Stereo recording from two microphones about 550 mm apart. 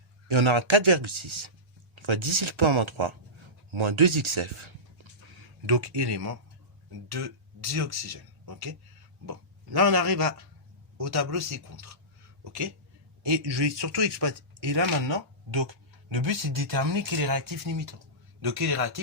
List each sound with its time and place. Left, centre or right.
0.3 s speech: right